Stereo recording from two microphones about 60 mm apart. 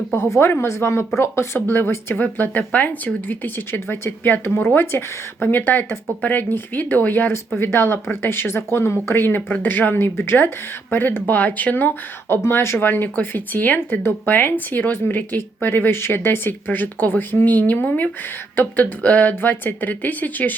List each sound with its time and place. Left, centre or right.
0.1 s speech: left
3.7 s speech: left
12.4 s speech: left